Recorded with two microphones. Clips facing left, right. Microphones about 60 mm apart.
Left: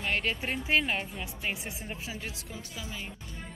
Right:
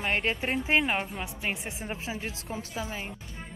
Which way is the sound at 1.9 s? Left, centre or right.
Right.